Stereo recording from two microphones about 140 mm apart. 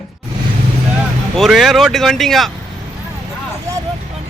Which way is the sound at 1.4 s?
Centre (ahead or behind).